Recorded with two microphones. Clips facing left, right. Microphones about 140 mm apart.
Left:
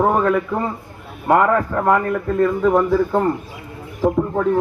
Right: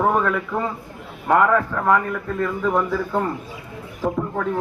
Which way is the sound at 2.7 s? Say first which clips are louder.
Left 5 dB; 25° left (ahead or behind).